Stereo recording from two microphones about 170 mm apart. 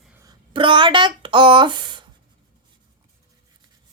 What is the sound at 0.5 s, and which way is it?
A woman's voice, 30° right (ahead or behind).